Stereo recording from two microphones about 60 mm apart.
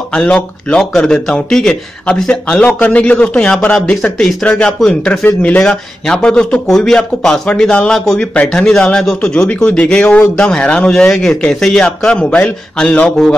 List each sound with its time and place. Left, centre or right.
0.1 s a man's voice: centre